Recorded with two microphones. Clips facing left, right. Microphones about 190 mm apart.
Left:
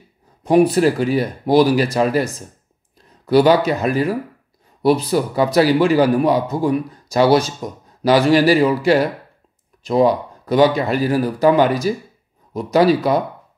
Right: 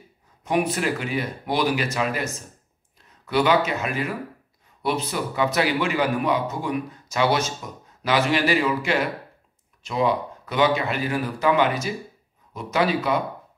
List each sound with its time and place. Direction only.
0.4 s a man's voice: 35° left (ahead or behind)